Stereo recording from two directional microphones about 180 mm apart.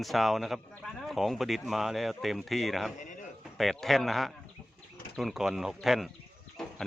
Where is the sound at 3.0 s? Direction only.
45° left (ahead or behind).